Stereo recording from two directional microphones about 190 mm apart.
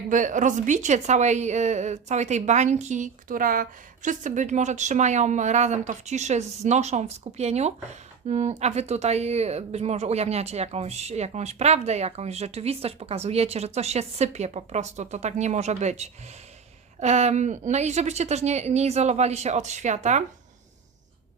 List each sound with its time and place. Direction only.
0.1 s speech: 40° right (ahead or behind)